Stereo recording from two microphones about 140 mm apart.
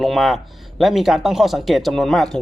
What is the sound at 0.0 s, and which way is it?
A man's voice, centre (ahead or behind).